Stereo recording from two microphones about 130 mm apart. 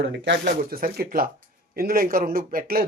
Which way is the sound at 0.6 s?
90° right.